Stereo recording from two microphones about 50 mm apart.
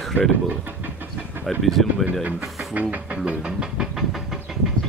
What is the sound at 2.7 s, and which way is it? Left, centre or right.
Vehicle, right.